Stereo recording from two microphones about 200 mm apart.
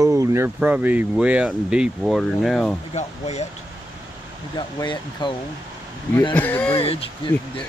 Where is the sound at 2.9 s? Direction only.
35° left (ahead or behind).